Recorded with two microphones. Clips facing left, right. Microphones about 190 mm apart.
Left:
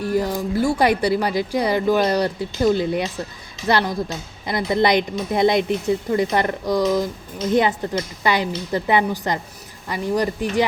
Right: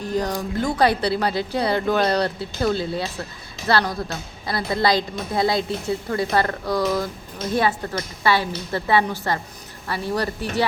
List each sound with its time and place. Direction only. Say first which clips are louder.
0.0 s a woman's voice: left 3 dB; 10° left (ahead or behind)